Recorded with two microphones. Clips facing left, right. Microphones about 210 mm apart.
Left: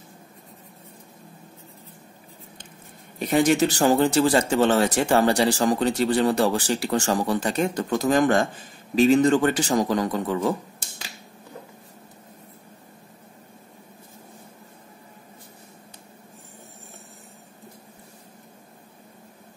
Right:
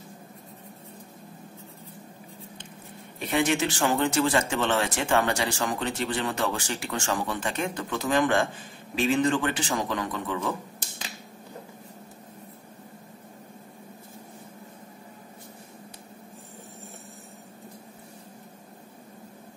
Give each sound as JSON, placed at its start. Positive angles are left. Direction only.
{"t": 3.2, "sound": "speech", "side_deg": 40}